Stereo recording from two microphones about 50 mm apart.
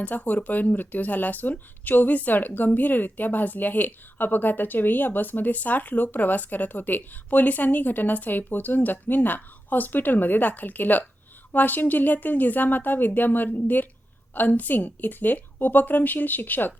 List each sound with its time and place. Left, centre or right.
0.0 s speech: left